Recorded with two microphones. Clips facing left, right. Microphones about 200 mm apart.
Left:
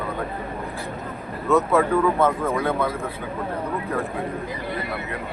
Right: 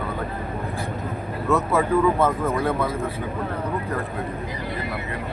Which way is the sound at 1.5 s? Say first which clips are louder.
Left 2 dB; 5° right (ahead or behind).